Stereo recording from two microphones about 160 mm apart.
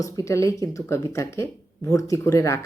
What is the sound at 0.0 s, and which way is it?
A woman's voice, 20° left (ahead or behind).